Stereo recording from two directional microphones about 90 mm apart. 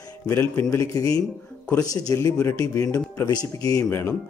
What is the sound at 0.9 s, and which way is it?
Speech, 40° left (ahead or behind).